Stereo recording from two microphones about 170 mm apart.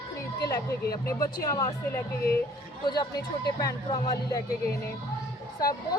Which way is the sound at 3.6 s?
20° left (ahead or behind).